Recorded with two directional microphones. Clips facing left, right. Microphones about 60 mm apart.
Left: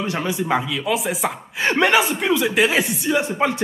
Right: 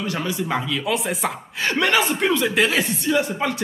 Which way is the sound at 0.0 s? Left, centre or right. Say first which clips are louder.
Left 2 dB; left.